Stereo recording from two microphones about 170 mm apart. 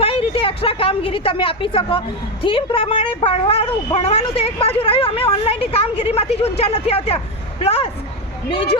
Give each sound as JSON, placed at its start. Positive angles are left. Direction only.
{"t": 0.0, "sound": "a woman's voice", "side_deg": 35}